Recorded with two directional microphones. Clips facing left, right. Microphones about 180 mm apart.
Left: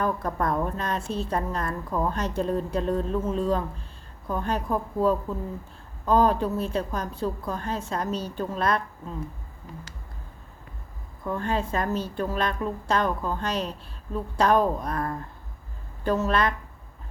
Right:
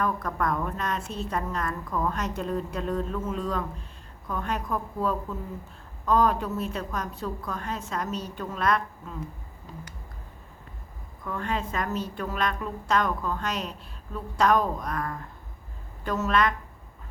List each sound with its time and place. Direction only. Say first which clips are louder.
0.0 s a woman's voice: left 2 dB; 30° left (ahead or behind)
11.2 s a woman's voice: left 3 dB; 30° left (ahead or behind)